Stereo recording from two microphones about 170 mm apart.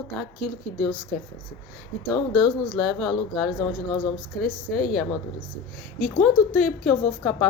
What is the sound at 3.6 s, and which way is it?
Speech, 25° left (ahead or behind).